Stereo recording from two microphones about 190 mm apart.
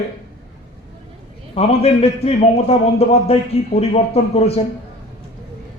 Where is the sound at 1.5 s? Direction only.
30° left (ahead or behind).